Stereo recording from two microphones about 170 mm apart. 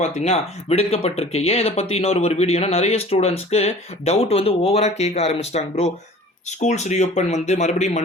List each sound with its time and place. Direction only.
0.0 s speech: 40° left (ahead or behind)